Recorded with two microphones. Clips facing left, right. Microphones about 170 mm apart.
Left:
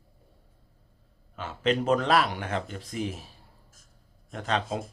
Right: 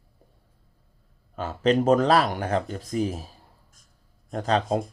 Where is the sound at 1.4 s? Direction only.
40° right (ahead or behind).